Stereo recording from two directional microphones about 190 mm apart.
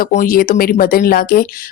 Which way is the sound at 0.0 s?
45° left (ahead or behind).